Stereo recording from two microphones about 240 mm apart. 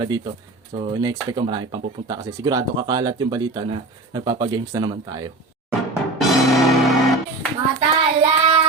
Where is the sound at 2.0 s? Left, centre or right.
Centre.